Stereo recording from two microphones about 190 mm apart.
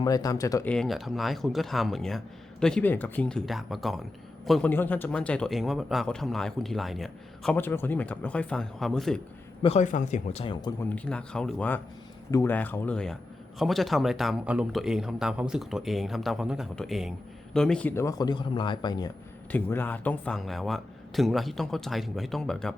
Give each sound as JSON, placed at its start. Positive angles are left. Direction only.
{"t": 0.0, "sound": "speech", "side_deg": 20}
{"t": 0.7, "sound": "speech", "side_deg": 0}
{"t": 9.6, "sound": "speech", "side_deg": 40}
{"t": 10.8, "sound": "speech", "side_deg": 5}
{"t": 19.5, "sound": "speech", "side_deg": 10}